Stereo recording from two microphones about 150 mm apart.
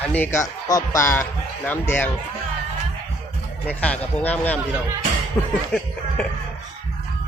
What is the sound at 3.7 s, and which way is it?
Speech, 10° left (ahead or behind).